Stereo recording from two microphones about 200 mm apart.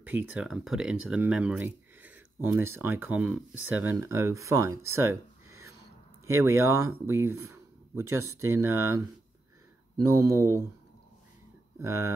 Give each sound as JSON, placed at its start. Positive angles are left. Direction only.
{"t": 0.0, "sound": "speech", "side_deg": -10}
{"t": 6.2, "sound": "speech", "side_deg": -15}
{"t": 11.8, "sound": "speech", "side_deg": -15}